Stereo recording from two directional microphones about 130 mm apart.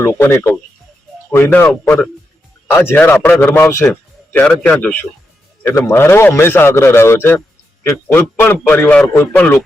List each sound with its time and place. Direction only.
0.0 s a man's voice: 20° left (ahead or behind)
2.7 s a man's voice: 15° left (ahead or behind)